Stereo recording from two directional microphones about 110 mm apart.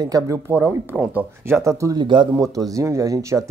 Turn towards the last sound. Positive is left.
turn(degrees=-30)  # may be behind; listen again after turning